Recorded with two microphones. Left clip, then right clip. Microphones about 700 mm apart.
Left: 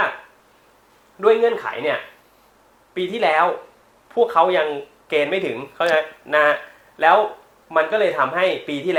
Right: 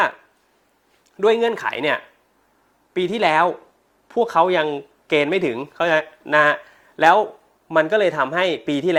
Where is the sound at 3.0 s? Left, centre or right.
Right.